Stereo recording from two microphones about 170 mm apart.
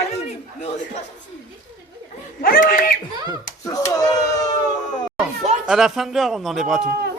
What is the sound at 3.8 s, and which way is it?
Speech, 20° left (ahead or behind).